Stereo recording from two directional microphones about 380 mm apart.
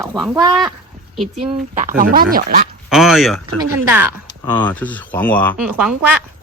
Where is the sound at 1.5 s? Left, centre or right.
Centre.